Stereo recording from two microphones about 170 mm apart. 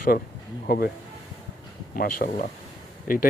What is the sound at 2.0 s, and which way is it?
Speech, 60° left (ahead or behind).